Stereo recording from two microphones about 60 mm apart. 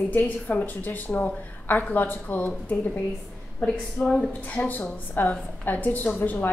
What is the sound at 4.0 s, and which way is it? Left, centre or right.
Speech, centre.